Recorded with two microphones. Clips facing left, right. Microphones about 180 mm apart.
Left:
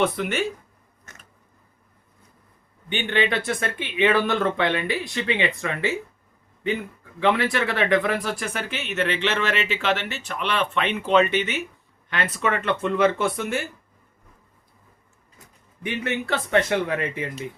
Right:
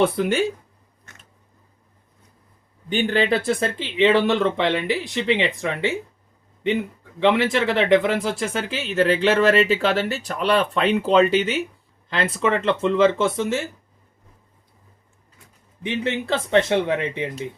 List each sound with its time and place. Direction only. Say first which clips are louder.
0.0 s speech: right 4 dB; 30° right (ahead or behind)
2.9 s speech: right 4 dB; 35° right (ahead or behind); by 5.9 s 20° right (ahead or behind)
7.2 s speech: right 3 dB; 25° right (ahead or behind)
15.8 s speech: right 3 dB; 25° right (ahead or behind)